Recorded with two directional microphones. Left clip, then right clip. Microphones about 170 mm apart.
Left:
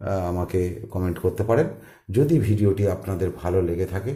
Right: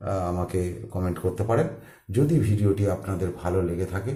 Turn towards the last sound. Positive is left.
turn(degrees=40)  # may be behind; listen again after turning